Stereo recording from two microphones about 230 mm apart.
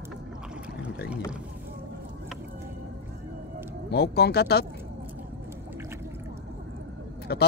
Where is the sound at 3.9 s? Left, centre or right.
Left.